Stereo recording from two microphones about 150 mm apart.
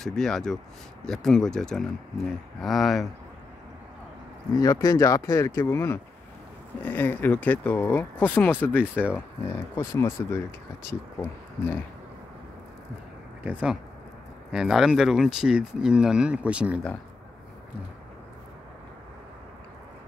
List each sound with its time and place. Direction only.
0.0 s speech: 5° left (ahead or behind)
4.6 s speech: 25° left (ahead or behind)
13.4 s speech: 10° right (ahead or behind)